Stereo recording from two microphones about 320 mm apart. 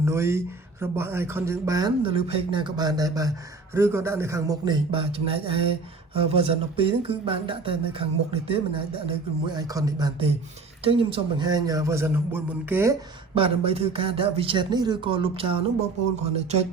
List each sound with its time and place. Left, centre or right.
0.0 s a man's voice: centre